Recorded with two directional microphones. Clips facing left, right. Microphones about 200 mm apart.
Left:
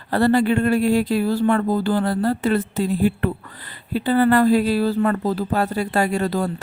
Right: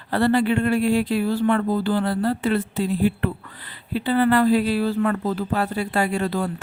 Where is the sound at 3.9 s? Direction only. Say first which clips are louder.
Left 2 dB; 45° left (ahead or behind).